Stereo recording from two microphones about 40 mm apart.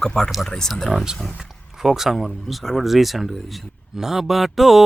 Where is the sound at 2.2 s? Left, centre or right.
Centre.